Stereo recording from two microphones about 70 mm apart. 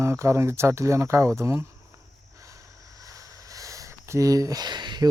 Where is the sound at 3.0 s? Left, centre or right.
Right.